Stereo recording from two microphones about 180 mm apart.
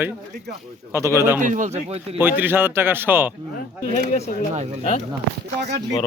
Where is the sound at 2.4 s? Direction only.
10° right (ahead or behind).